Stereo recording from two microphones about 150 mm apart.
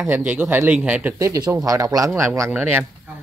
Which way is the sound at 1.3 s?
25° right (ahead or behind).